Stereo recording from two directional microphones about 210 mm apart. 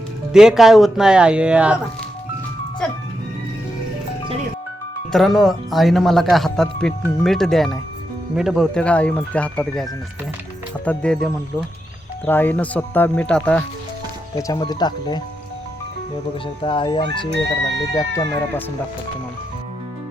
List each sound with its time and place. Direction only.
0.3 s speech: centre (ahead or behind)
5.1 s speech: centre (ahead or behind)
10.8 s speech: 5° left (ahead or behind)
14.3 s speech: 15° left (ahead or behind)
16.6 s speech: 25° left (ahead or behind)